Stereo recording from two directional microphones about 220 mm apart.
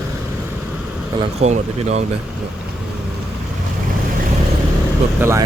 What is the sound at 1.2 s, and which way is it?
Speech, 30° right (ahead or behind).